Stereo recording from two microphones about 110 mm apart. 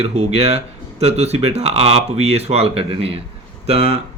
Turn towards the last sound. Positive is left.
turn(degrees=-65)  # may be behind; listen again after turning